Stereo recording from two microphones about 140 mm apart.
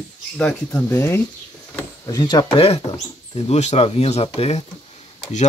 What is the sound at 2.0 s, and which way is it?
Speech, 30° left (ahead or behind).